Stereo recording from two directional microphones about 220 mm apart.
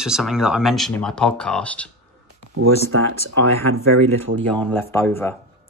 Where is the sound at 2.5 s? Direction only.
70° right (ahead or behind).